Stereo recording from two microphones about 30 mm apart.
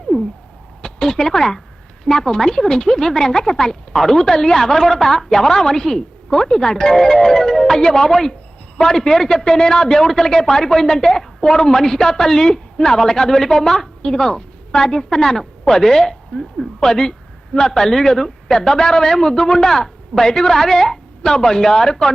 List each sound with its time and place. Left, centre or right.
0.1 s a sound: left
1.0 s a man's voice: centre
3.9 s a man's voice: centre
16.8 s a man's voice: centre